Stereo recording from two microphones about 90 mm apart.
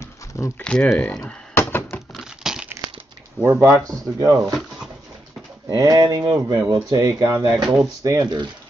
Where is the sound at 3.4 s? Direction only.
35° right (ahead or behind).